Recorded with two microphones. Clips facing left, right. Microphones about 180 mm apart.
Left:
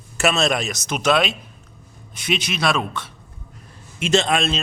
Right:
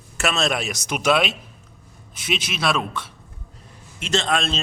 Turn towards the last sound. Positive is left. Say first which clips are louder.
# left 4 dB
turn(degrees=10)  # may be behind; listen again after turning